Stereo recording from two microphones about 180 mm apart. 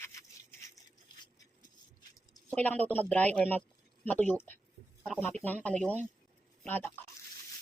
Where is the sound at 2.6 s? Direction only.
10° left (ahead or behind).